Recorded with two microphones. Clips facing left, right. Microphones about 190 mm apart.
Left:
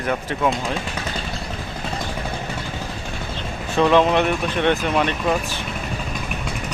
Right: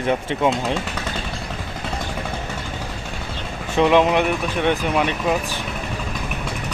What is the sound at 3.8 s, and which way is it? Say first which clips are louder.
Speech: even; 15° right (ahead or behind).